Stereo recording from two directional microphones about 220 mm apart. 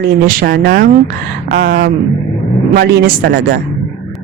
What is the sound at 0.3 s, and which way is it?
Speech, 40° right (ahead or behind).